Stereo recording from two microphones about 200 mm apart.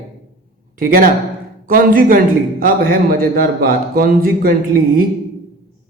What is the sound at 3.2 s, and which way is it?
A man's voice, 50° right (ahead or behind).